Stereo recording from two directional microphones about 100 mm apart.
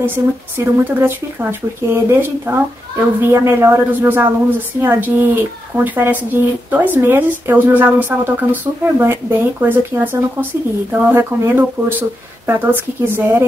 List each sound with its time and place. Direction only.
0.0 s speech: 20° right (ahead or behind)